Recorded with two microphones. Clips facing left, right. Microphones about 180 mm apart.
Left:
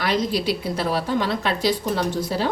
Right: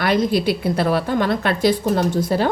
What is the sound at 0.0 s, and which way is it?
A woman's voice, 55° right (ahead or behind).